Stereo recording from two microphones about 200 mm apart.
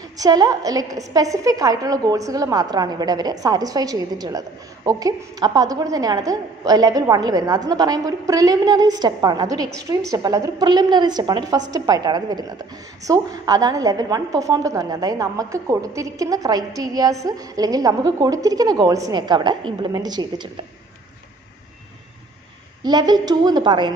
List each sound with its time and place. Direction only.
0.2 s a woman's voice: 20° right (ahead or behind)
22.8 s a woman's voice: 20° right (ahead or behind)